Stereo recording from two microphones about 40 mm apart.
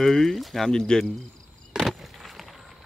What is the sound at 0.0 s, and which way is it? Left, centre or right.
Speech, centre.